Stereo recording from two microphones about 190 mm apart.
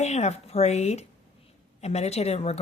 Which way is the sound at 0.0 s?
35° left (ahead or behind).